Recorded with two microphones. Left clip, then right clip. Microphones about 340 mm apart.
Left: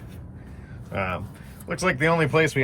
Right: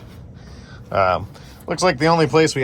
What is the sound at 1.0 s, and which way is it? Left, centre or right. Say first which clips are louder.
Speech: right 11 dB; right.